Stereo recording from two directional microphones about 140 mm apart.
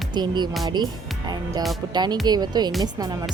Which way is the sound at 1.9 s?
30° right (ahead or behind).